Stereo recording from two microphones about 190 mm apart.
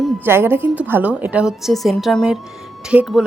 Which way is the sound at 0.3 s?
10° right (ahead or behind).